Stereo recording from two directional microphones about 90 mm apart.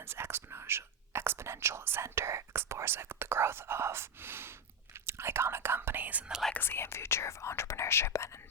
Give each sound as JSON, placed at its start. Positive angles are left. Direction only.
{"t": 0.1, "sound": "speech", "side_deg": -25}
{"t": 6.5, "sound": "speech", "side_deg": 25}